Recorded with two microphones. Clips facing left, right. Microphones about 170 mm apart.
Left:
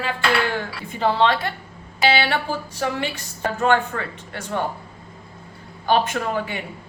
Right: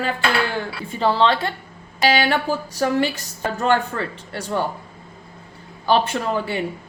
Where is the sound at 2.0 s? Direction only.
45° right (ahead or behind).